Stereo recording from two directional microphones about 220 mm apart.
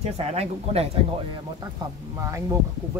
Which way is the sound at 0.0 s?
30° right (ahead or behind).